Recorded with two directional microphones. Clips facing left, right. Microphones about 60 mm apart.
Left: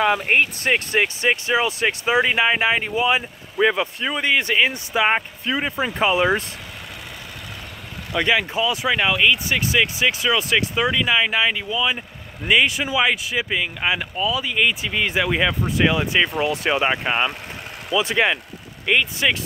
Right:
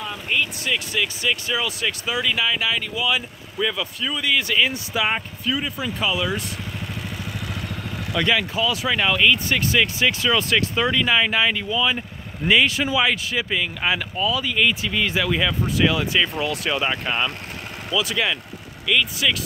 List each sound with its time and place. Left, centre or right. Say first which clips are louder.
0.3 s speech: left 5 dB; left
8.1 s speech: left 2 dB; centre